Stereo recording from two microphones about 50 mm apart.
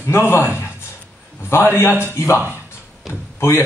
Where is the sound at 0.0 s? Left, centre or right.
Left.